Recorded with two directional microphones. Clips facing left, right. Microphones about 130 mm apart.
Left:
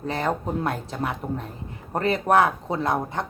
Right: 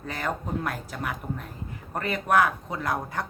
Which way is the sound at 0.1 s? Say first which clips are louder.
Left 4 dB; 30° left (ahead or behind).